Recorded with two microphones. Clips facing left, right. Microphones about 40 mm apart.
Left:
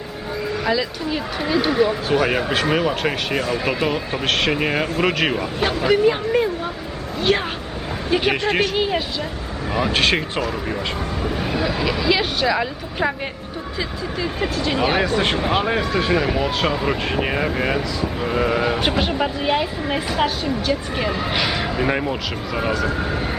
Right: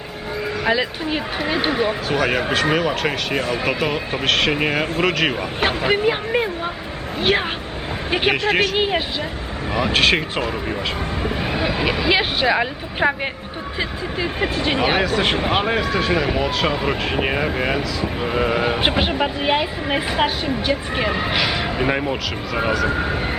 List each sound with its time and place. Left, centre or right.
0.6 s speech: right
2.0 s speech: centre
5.8 s speech: right
8.4 s speech: centre
8.7 s speech: right
9.7 s speech: centre
11.3 s speech: right
15.0 s speech: centre
15.4 s speech: right
15.6 s speech: centre
18.8 s speech: right
21.3 s speech: centre